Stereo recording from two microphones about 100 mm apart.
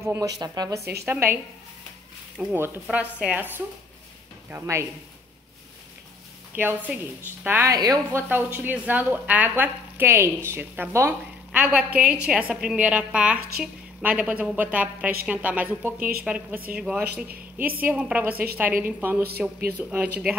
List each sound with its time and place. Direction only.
0.0 s speech: 30° right (ahead or behind)
0.4 s speech: 45° right (ahead or behind)
1.0 s speech: 20° right (ahead or behind)
2.5 s a woman's voice: 20° right (ahead or behind)
4.5 s speech: 25° right (ahead or behind)
6.5 s a woman's voice: 15° right (ahead or behind)
7.7 s speech: 40° right (ahead or behind)
8.1 s speech: 25° right (ahead or behind)
11.5 s a woman's voice: 15° right (ahead or behind)